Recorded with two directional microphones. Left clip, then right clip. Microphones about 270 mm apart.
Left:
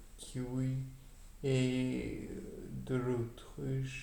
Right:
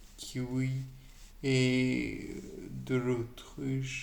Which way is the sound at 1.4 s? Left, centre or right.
Right.